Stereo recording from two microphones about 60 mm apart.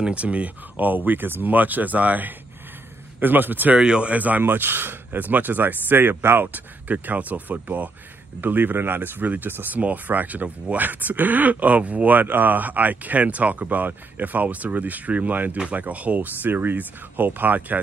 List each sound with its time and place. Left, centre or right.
0.0 s speech: right
3.7 s speech: centre
4.1 s speech: right